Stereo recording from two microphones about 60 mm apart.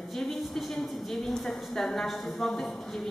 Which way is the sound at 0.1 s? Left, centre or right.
Centre.